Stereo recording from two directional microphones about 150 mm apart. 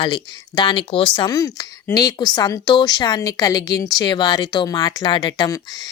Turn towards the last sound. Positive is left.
turn(degrees=30)  # may be behind; listen again after turning